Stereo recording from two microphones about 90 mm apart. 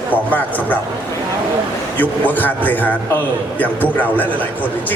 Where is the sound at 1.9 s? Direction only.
20° left (ahead or behind).